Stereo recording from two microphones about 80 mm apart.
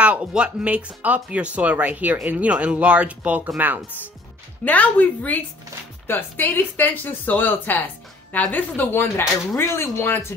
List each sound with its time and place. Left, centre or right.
0.0 s speech: centre
4.6 s speech: centre